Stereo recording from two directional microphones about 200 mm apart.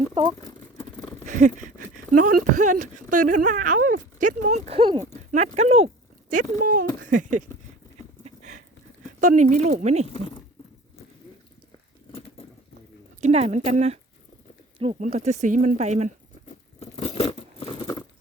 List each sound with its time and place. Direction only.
1.2 s speech: 40° right (ahead or behind)
6.6 s speech: 45° right (ahead or behind)
8.2 s dog: 35° right (ahead or behind)
9.2 s speech: 35° right (ahead or behind)
10.1 s speech: 25° left (ahead or behind)
13.2 s speech: 35° right (ahead or behind)
16.5 s a sound: 35° left (ahead or behind)